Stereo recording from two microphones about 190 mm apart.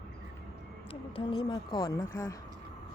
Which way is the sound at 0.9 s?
30° left (ahead or behind).